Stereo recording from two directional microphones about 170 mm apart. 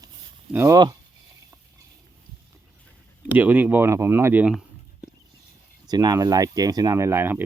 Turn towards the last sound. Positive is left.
turn(degrees=-15)  # may be behind; listen again after turning